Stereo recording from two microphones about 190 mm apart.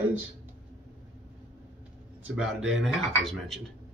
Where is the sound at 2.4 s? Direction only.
Centre (ahead or behind).